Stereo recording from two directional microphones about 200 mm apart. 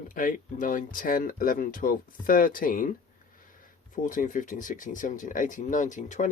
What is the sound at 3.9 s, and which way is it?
Speech, 40° left (ahead or behind).